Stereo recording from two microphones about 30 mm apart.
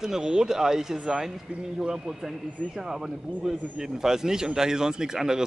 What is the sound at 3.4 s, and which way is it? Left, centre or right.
Speech, right.